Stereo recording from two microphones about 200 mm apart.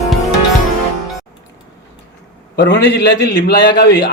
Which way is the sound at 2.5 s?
60° left (ahead or behind).